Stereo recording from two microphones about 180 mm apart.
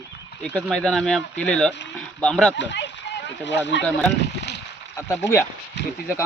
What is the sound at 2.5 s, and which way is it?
Speech, 85° left.